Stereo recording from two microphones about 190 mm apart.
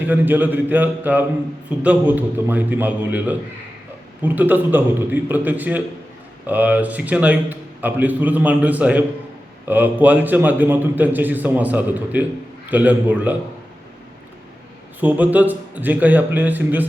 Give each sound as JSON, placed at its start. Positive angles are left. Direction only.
{"t": 0.0, "sound": "a man's voice", "side_deg": -10}
{"t": 15.0, "sound": "a man's voice", "side_deg": -10}